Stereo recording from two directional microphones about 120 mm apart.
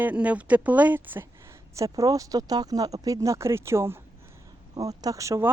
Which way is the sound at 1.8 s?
30° right (ahead or behind).